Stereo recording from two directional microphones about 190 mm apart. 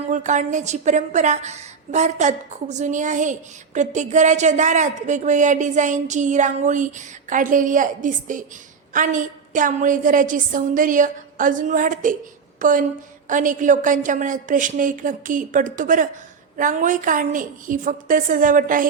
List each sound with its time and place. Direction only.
0.1 s a woman's voice: 40° right (ahead or behind)